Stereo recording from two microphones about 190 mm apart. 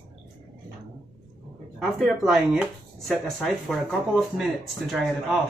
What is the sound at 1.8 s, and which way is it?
Speech, centre (ahead or behind).